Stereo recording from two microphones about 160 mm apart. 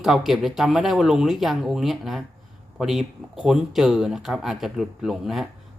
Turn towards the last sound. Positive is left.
turn(degrees=0)  # may be behind; listen again after turning